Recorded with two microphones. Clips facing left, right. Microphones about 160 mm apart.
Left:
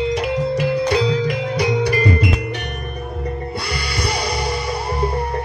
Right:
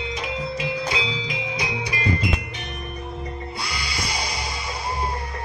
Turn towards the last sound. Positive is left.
turn(degrees=60)  # may be behind; listen again after turning